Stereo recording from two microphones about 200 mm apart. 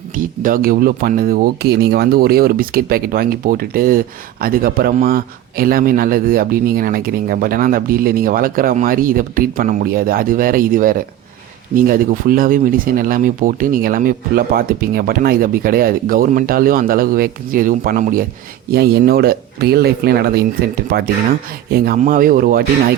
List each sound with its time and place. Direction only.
0.2 s speech: 45° right (ahead or behind)